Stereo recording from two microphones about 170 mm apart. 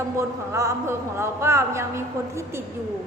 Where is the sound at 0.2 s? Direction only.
15° right (ahead or behind).